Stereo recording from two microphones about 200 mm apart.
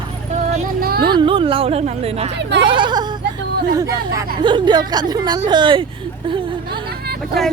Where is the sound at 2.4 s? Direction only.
60° right (ahead or behind).